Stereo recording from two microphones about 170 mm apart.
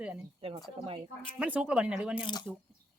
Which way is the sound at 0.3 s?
30° right (ahead or behind).